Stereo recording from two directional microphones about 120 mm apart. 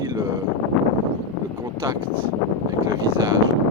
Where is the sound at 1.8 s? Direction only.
30° right (ahead or behind).